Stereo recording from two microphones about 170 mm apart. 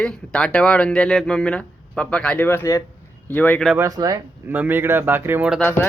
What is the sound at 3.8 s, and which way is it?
Speech, 20° right (ahead or behind).